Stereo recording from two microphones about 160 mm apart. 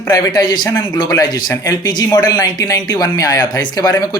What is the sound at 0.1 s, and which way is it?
Speech, 25° left (ahead or behind).